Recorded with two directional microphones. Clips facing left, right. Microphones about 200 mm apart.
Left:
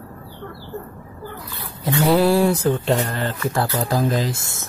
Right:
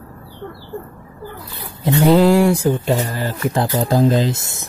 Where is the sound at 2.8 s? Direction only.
5° right (ahead or behind).